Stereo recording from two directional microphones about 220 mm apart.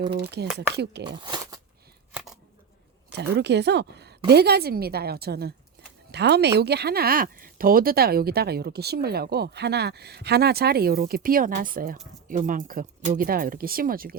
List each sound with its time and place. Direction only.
0.1 s speech: 50° right (ahead or behind)
1.2 s a sound: 20° right (ahead or behind)
2.1 s scissors: centre (ahead or behind)
3.1 s speech: 50° right (ahead or behind)